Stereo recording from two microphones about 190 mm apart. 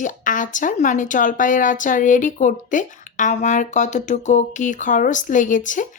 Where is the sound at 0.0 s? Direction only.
45° left (ahead or behind).